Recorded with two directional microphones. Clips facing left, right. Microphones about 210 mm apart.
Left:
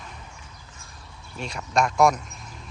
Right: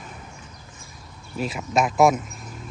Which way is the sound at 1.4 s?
5° right (ahead or behind).